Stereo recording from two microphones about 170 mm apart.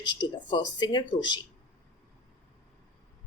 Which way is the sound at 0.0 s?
25° left (ahead or behind).